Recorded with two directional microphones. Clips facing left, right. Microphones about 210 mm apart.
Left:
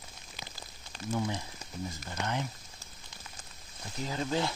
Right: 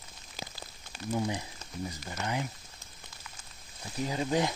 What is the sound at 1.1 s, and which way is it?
Speech, 15° right (ahead or behind).